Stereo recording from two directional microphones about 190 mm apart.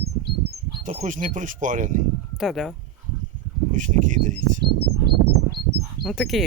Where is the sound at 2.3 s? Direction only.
Centre (ahead or behind).